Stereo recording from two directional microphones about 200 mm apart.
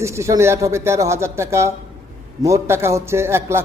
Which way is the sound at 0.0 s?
15° right (ahead or behind).